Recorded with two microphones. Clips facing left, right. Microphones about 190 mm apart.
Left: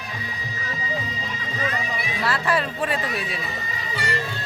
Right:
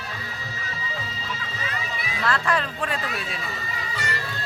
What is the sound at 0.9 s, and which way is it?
Music, 15° left (ahead or behind).